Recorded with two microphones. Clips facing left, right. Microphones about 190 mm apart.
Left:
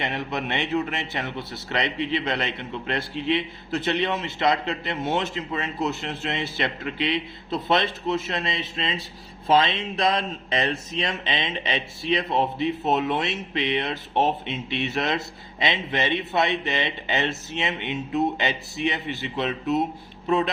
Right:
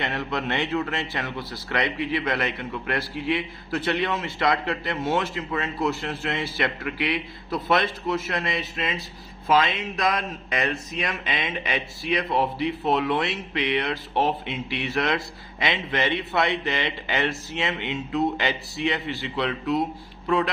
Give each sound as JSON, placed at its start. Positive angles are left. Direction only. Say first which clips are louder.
{"t": 0.0, "sound": "a man's voice", "louder": "even", "side_deg": 20}